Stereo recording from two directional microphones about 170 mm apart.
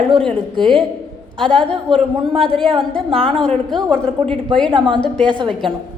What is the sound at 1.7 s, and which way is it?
Speech, 35° right (ahead or behind).